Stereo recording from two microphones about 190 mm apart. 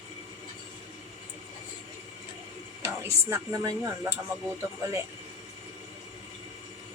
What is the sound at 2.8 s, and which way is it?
Speech, 15° right (ahead or behind).